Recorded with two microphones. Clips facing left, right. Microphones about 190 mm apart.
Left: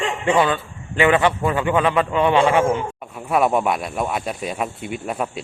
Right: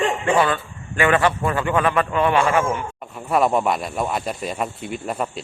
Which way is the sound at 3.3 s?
5° left (ahead or behind).